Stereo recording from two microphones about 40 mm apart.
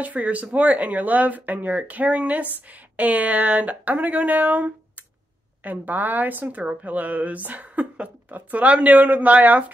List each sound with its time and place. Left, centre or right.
0.0 s a woman's voice: right